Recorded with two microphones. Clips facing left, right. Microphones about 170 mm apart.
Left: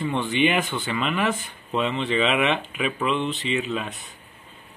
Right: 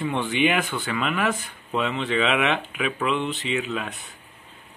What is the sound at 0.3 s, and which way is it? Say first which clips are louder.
Speech: left 1 dB; 5° right (ahead or behind).